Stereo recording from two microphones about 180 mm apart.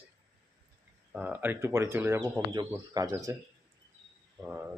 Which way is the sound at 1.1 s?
10° right (ahead or behind).